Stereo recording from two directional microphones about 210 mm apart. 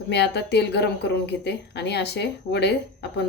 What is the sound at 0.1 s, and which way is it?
A woman's voice, 55° left (ahead or behind).